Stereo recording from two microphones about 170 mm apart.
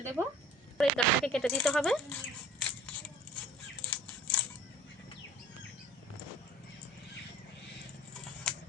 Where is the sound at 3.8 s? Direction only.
10° left (ahead or behind).